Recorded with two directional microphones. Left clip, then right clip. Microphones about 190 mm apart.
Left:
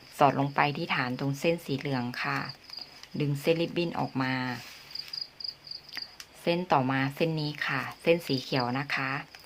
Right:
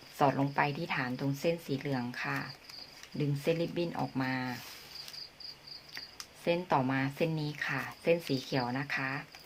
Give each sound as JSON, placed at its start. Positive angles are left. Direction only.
{"t": 0.2, "sound": "speech", "side_deg": 30}
{"t": 6.4, "sound": "speech", "side_deg": 25}